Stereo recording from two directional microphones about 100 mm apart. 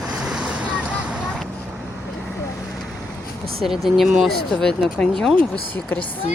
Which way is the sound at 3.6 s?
Centre (ahead or behind).